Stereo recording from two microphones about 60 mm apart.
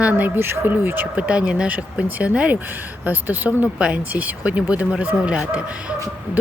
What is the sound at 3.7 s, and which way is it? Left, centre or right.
Speech, right.